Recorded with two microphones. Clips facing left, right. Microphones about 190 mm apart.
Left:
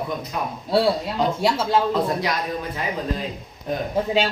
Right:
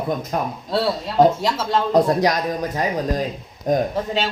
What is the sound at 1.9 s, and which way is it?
Speech, 40° right (ahead or behind).